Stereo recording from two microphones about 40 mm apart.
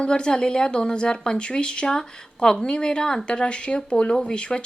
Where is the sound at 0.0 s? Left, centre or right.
Left.